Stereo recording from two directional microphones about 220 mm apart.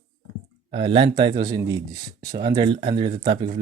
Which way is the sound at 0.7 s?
20° right (ahead or behind).